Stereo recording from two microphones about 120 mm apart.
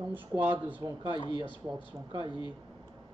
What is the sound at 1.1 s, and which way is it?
Speech, 40° left (ahead or behind).